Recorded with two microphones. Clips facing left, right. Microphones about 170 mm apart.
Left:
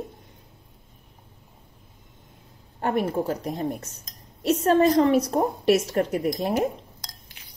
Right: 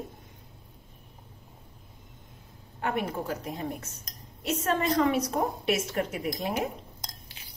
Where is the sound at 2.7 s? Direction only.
40° left (ahead or behind).